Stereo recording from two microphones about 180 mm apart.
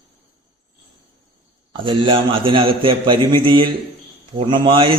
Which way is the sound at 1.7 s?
30° right (ahead or behind).